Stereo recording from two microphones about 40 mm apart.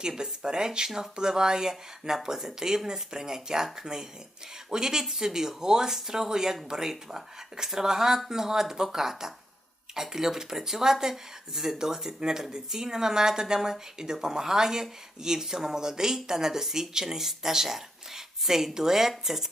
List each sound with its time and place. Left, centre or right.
0.2 s speech: centre